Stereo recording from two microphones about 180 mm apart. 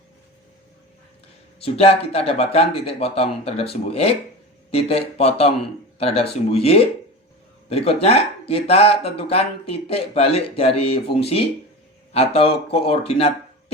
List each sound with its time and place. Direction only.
1.6 s speech: 30° left (ahead or behind)